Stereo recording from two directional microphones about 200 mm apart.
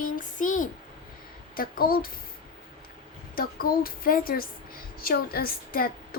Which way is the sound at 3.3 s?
45° left (ahead or behind).